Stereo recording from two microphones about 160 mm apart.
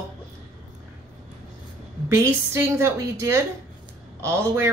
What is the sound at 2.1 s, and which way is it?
Speech, 15° right (ahead or behind).